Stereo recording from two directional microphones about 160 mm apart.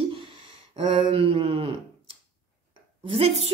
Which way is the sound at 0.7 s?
35° right (ahead or behind).